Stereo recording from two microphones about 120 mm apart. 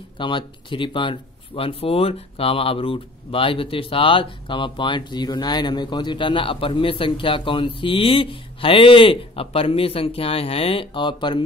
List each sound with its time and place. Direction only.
0.2 s speech: 45° left (ahead or behind)